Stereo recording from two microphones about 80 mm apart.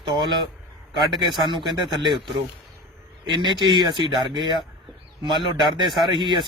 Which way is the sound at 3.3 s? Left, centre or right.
Right.